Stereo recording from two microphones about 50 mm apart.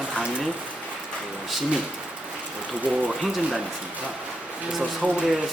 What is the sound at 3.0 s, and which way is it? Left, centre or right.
Speech, centre.